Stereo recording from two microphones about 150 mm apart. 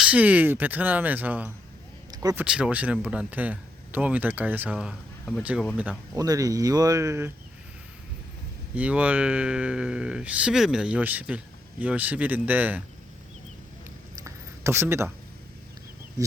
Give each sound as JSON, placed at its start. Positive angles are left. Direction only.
{"t": 0.0, "sound": "speech", "side_deg": -10}
{"t": 6.1, "sound": "speech", "side_deg": -25}
{"t": 8.7, "sound": "speech", "side_deg": -10}
{"t": 14.3, "sound": "a sound", "side_deg": -15}